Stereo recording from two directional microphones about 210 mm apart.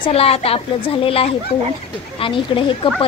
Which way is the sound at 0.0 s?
30° left (ahead or behind).